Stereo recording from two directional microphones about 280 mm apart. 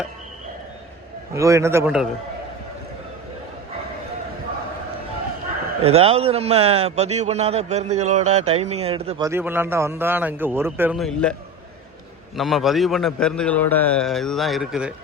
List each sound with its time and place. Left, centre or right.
1.3 s a man's voice: centre
5.8 s a man's voice: right; by 11.3 s centre
12.4 s a man's voice: centre